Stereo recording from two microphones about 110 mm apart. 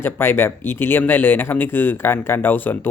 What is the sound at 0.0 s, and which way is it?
Speech, 20° left (ahead or behind).